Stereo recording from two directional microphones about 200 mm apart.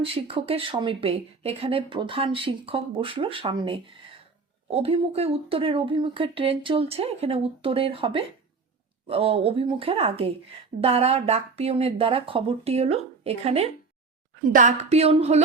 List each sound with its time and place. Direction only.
0.0 s a woman's voice: 25° right (ahead or behind)